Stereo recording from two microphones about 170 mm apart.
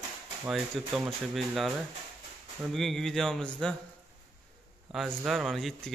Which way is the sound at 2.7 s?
Centre (ahead or behind).